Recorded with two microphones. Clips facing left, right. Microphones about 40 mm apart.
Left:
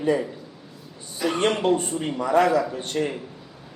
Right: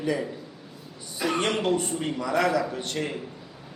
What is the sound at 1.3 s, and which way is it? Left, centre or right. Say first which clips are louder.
A man's voice: left 4 dB; left.